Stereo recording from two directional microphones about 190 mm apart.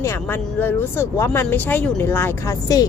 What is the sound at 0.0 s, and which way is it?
Speech, 10° left (ahead or behind).